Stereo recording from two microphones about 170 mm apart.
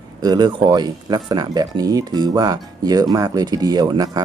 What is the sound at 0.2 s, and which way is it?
Speech, 25° right (ahead or behind).